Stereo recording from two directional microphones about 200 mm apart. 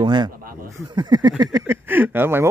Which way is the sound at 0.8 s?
20° right (ahead or behind).